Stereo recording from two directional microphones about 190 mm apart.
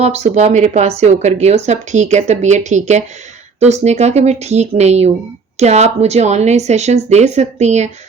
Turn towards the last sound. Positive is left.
turn(degrees=-35)  # may be behind; listen again after turning